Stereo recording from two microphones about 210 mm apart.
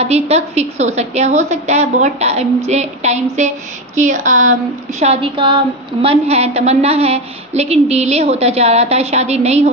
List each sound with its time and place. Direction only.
0.0 s a woman's voice: 30° right (ahead or behind)